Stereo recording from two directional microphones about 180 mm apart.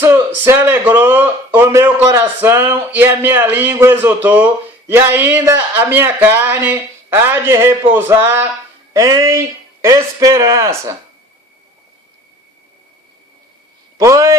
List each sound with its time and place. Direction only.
0.0 s speech: 15° right (ahead or behind)
14.0 s speech: 15° right (ahead or behind)